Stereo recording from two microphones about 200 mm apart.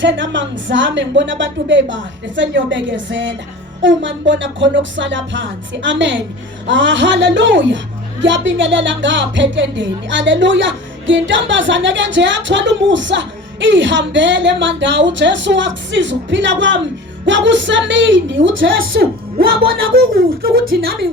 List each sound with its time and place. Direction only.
0.0 s a woman's voice: 65° right (ahead or behind)
18.8 s speech: 50° right (ahead or behind)